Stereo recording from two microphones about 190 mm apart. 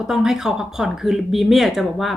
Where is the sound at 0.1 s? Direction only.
5° right (ahead or behind).